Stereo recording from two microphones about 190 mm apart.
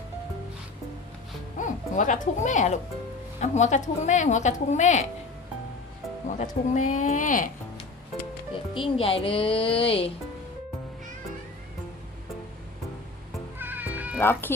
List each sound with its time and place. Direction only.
1.5 s a woman's voice: 40° left (ahead or behind)
6.2 s a woman's voice: 40° left (ahead or behind)
8.7 s speech: 30° left (ahead or behind)
13.6 s cat: 10° right (ahead or behind)
14.2 s speech: 10° left (ahead or behind)